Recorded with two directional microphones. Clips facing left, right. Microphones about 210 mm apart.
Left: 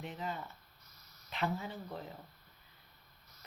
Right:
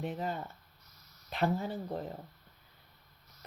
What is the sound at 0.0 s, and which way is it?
Speech, 45° right (ahead or behind).